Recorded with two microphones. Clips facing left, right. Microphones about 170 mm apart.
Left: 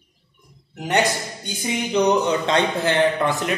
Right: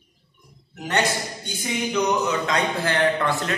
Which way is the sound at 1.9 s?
30° left (ahead or behind).